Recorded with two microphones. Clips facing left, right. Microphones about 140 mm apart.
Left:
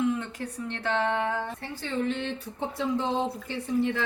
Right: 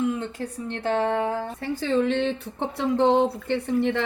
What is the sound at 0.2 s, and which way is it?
Speech, 30° right (ahead or behind).